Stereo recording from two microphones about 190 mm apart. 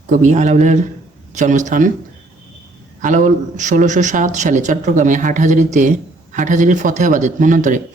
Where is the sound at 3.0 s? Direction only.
40° right (ahead or behind).